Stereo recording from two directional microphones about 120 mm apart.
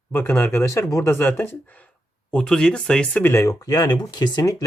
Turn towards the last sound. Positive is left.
turn(degrees=30)  # may be behind; listen again after turning